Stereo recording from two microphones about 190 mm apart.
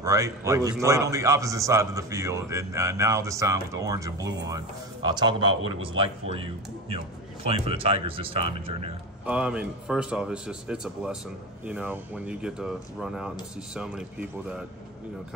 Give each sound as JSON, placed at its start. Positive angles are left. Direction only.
{"t": 0.0, "sound": "a man's voice", "side_deg": -15}
{"t": 9.2, "sound": "a man's voice", "side_deg": -5}